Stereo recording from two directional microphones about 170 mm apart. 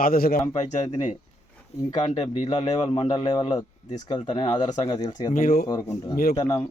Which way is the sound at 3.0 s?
25° left (ahead or behind).